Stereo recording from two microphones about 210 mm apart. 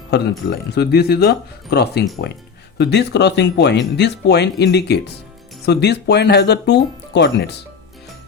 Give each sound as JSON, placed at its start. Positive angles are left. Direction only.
{"t": 0.1, "sound": "speech", "side_deg": 50}